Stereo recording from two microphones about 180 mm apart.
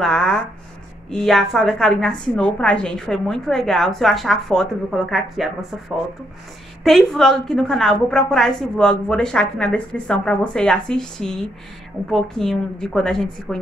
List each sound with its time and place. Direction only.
0.0 s a woman's voice: 5° left (ahead or behind)
6.8 s a woman's voice: centre (ahead or behind)